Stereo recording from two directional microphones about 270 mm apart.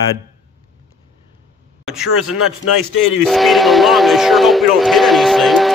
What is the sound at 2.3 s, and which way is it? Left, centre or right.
Speech, left.